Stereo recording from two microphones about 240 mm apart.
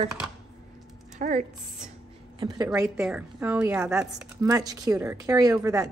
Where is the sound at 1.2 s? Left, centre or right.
Right.